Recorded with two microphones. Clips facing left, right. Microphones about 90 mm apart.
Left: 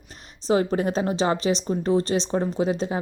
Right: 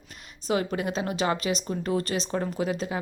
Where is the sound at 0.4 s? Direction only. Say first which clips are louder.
Left 5 dB; 30° left (ahead or behind).